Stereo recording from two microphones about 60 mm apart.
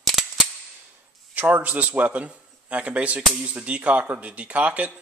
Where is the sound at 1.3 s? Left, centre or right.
Right.